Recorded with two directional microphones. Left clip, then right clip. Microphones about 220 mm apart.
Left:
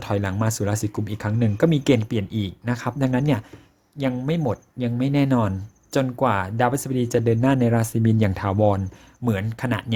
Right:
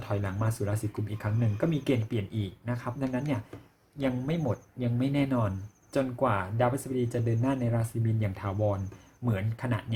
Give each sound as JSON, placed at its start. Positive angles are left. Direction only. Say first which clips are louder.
{"t": 0.0, "sound": "speech", "louder": "left 8 dB", "side_deg": 40}